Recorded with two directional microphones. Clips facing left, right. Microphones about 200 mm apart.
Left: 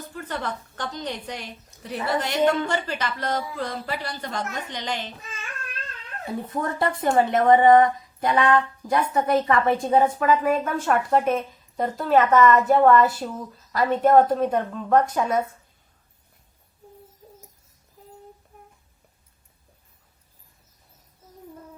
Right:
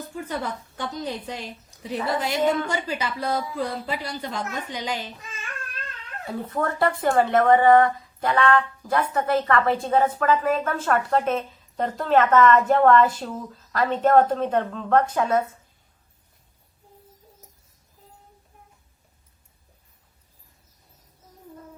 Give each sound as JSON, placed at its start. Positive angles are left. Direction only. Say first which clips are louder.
{"t": 0.2, "sound": "a woman's voice", "louder": "right 1 dB", "side_deg": -10}
{"t": 6.3, "sound": "speech", "louder": "right 1 dB", "side_deg": 15}